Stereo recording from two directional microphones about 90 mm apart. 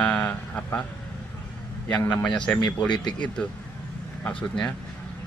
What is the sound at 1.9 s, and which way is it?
Speech, 15° left (ahead or behind).